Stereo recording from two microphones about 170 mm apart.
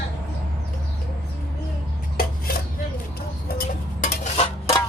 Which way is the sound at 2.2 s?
60° left (ahead or behind).